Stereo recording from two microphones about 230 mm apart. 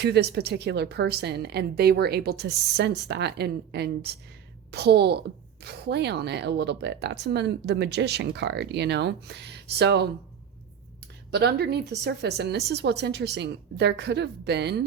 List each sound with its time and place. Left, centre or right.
0.0 s speech: right
11.3 s speech: right